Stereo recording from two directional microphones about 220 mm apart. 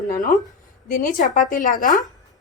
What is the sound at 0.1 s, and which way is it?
Speech, 40° left (ahead or behind).